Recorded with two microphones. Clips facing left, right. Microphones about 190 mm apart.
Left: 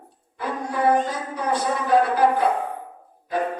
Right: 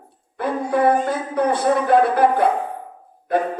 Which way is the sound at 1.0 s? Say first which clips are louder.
Right 7 dB; 55° right (ahead or behind).